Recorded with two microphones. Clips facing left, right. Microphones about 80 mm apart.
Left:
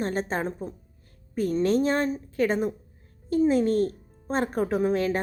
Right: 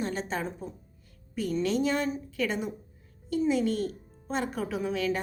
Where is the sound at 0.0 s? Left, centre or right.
Left.